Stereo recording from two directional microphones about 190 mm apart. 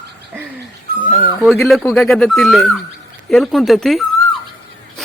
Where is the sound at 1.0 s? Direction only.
45° left (ahead or behind).